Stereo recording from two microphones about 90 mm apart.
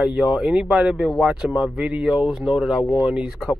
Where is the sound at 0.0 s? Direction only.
5° right (ahead or behind).